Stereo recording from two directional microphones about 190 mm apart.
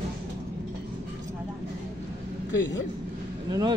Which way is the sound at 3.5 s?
20° right (ahead or behind).